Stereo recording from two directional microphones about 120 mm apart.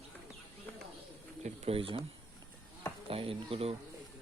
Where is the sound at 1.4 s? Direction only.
55° right (ahead or behind).